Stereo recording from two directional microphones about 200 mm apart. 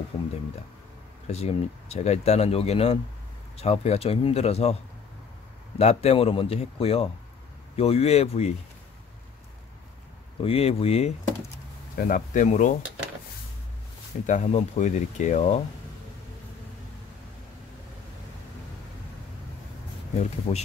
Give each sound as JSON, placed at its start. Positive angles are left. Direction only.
{"t": 1.2, "sound": "speech", "side_deg": 30}
{"t": 5.8, "sound": "speech", "side_deg": 30}
{"t": 10.4, "sound": "speech", "side_deg": 30}
{"t": 14.2, "sound": "speech", "side_deg": 35}
{"t": 20.2, "sound": "speech", "side_deg": 30}